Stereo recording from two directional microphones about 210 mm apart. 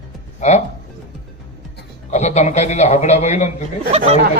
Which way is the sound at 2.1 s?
35° left (ahead or behind).